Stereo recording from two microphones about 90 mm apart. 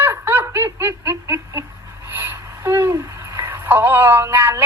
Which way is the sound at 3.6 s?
20° right (ahead or behind).